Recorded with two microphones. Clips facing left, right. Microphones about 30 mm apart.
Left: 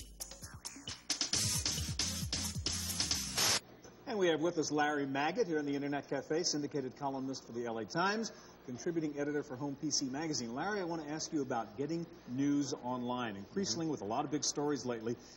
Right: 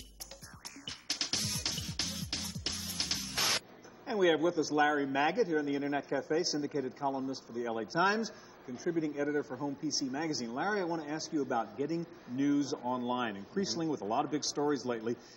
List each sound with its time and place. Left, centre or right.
0.8 s music: centre
4.4 s a man's voice: centre